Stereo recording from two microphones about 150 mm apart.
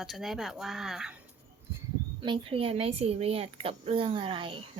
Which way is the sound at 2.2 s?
35° right (ahead or behind).